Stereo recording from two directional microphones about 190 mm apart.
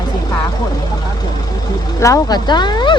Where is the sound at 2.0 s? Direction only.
20° left (ahead or behind).